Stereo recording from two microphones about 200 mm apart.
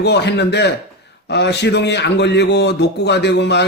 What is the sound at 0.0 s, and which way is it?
A man's voice, 55° left (ahead or behind).